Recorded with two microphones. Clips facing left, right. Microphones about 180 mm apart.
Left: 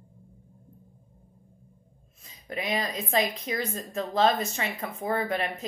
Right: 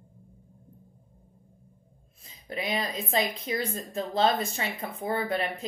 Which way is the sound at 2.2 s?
30° right (ahead or behind).